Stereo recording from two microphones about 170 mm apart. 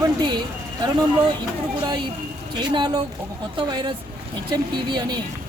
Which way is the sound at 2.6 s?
25° right (ahead or behind).